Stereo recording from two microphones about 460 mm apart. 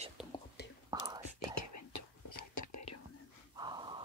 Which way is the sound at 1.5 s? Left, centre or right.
Left.